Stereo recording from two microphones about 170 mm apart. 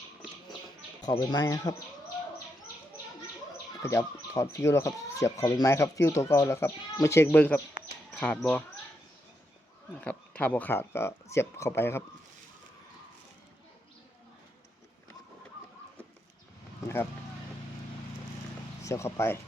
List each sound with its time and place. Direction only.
1.0 s speech: 25° left (ahead or behind)
3.8 s speech: 15° left (ahead or behind)
10.0 s speech: 10° left (ahead or behind)
18.9 s speech: 15° left (ahead or behind)